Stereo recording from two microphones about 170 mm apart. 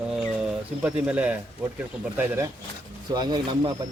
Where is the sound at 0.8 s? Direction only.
10° right (ahead or behind).